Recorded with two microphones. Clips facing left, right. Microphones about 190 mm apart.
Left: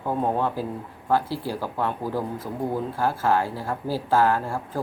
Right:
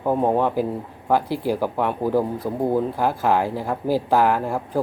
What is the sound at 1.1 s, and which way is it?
Speech, 15° right (ahead or behind).